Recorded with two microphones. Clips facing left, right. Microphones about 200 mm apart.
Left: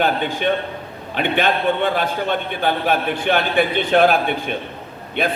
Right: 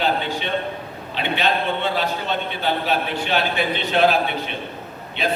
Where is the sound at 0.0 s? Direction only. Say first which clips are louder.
Left 4 dB; 50° left (ahead or behind).